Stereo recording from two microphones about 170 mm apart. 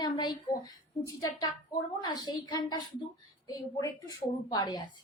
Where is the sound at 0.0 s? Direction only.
25° left (ahead or behind).